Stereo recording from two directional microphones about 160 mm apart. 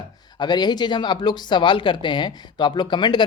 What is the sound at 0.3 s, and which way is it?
Speech, 25° left (ahead or behind).